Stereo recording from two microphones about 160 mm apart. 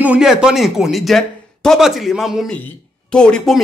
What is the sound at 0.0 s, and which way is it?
A man's voice, 5° right (ahead or behind).